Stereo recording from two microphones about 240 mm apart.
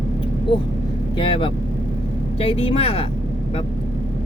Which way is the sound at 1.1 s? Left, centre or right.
Left.